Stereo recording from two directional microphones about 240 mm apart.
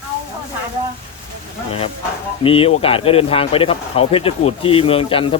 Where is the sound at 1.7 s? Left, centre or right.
Left.